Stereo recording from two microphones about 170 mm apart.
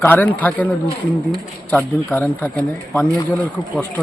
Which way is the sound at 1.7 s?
10° left (ahead or behind).